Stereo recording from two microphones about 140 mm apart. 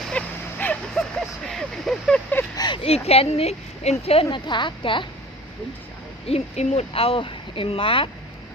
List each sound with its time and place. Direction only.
0.1 s a sound: 10° left (ahead or behind)
2.6 s speech: 35° left (ahead or behind)
6.2 s speech: 50° left (ahead or behind)